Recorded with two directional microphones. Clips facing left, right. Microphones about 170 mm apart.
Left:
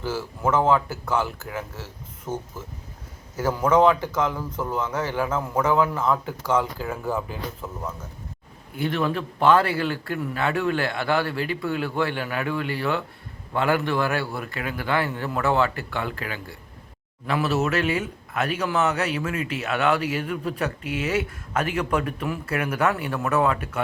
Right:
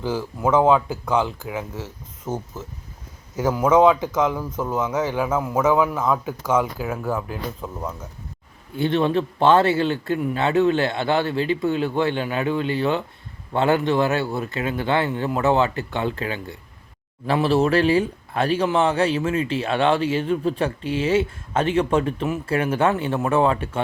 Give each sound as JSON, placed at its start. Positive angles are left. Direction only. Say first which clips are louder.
{"t": 0.0, "sound": "a man's voice", "louder": "right 3 dB", "side_deg": -15}
{"t": 8.7, "sound": "speech", "louder": "right 5 dB", "side_deg": -25}